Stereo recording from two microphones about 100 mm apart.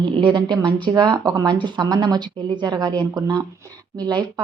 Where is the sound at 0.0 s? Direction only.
50° right (ahead or behind).